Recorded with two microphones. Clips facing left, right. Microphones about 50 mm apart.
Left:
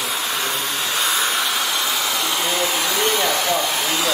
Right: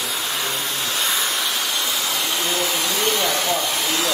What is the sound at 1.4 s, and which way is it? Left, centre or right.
Hair dryer, centre.